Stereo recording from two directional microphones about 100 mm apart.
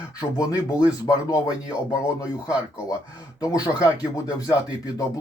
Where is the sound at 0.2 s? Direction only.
35° left (ahead or behind).